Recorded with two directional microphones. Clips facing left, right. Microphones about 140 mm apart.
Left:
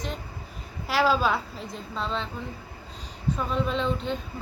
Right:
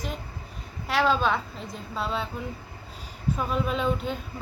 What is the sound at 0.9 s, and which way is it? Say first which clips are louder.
A woman's voice: even; centre (ahead or behind).